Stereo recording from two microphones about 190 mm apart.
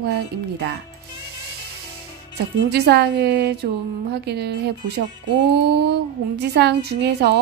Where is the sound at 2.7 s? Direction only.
60° right (ahead or behind).